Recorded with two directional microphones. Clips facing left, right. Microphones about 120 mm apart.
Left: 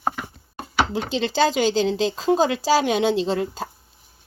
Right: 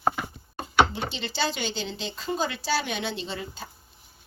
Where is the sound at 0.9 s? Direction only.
90° left.